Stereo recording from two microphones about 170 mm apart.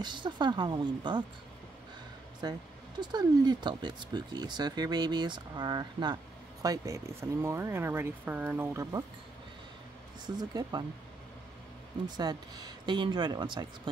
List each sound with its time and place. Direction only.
0.0 s speech: 25° right (ahead or behind)
2.4 s speech: 25° right (ahead or behind)
10.2 s speech: 25° right (ahead or behind)
12.2 s speech: 25° right (ahead or behind)